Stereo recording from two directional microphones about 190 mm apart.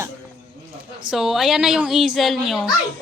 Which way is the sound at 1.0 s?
Centre (ahead or behind).